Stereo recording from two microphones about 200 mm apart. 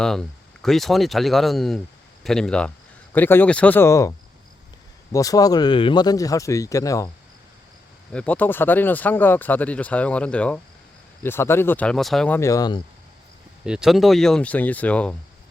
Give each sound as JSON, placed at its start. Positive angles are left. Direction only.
{"t": 0.0, "sound": "speech", "side_deg": 5}
{"t": 5.1, "sound": "speech", "side_deg": 15}
{"t": 8.1, "sound": "speech", "side_deg": 5}
{"t": 13.7, "sound": "speech", "side_deg": -5}